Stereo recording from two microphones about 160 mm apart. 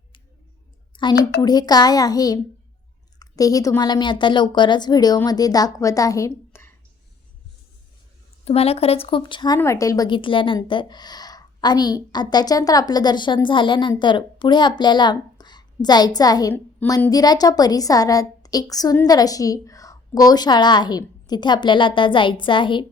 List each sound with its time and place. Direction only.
0.9 s a sound: 30° left (ahead or behind)
1.4 s a woman's voice: 25° left (ahead or behind)
8.4 s a woman's voice: 40° left (ahead or behind)